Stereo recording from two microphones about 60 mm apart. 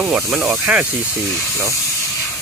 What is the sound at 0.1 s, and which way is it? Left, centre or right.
Speech, centre.